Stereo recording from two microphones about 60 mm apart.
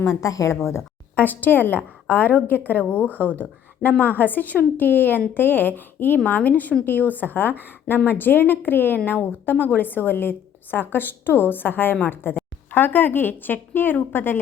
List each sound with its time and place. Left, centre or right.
0.0 s speech: left
0.6 s a woman's voice: left
1.1 s a woman's voice: left